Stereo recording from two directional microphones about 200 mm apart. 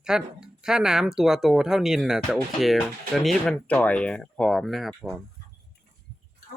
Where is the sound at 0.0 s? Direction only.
5° right (ahead or behind).